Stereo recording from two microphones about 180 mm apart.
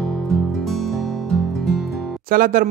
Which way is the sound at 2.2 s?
50° right (ahead or behind).